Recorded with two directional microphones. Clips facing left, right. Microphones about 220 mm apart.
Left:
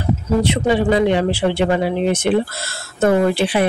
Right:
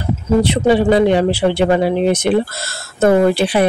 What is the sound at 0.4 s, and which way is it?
Speech, 35° right (ahead or behind).